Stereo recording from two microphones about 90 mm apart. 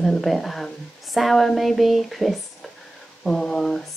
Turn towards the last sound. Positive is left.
turn(degrees=5)  # may be behind; listen again after turning